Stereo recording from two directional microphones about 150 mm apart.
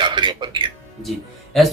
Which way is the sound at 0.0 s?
30° right (ahead or behind).